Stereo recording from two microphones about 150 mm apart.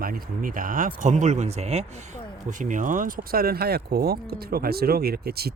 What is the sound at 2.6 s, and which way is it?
Speech, 60° right (ahead or behind).